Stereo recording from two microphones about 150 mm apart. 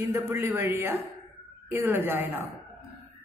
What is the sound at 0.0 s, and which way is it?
A man's voice, 20° right (ahead or behind).